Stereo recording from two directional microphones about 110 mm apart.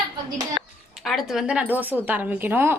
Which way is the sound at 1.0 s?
Centre (ahead or behind).